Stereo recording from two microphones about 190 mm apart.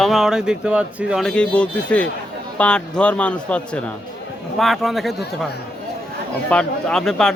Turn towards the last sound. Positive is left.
turn(degrees=0)  # may be behind; listen again after turning